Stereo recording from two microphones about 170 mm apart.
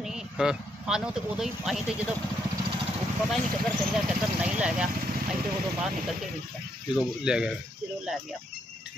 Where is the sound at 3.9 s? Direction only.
5° right (ahead or behind).